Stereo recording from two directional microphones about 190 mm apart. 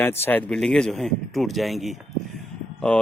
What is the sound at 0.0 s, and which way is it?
Speech, 10° left (ahead or behind).